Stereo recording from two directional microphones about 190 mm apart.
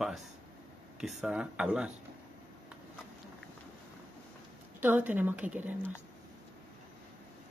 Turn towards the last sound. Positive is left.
turn(degrees=-10)  # may be behind; listen again after turning